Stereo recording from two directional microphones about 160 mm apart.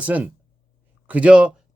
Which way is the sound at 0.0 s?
10° right (ahead or behind).